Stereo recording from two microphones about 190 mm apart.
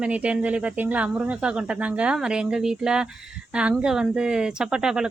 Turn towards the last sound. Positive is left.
turn(degrees=-5)  # may be behind; listen again after turning